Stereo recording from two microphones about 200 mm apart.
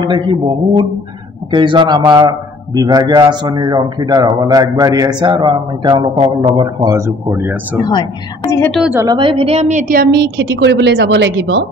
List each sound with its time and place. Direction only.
0.0 s a man's voice: 20° right (ahead or behind)
7.8 s a woman's voice: 20° left (ahead or behind)
8.7 s a woman's voice: 5° right (ahead or behind)
9.0 s a woman's voice: 25° right (ahead or behind); by 11.6 s 65° right (ahead or behind)